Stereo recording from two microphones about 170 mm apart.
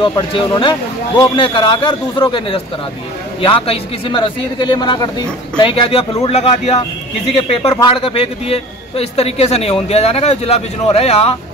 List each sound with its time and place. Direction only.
0.0 s a man's voice: 30° left (ahead or behind)